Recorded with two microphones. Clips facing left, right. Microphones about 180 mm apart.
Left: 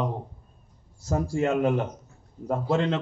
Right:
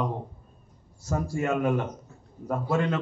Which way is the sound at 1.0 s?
30° left (ahead or behind).